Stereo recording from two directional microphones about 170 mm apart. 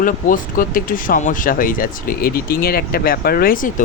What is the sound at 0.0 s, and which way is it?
Speech, 55° left (ahead or behind).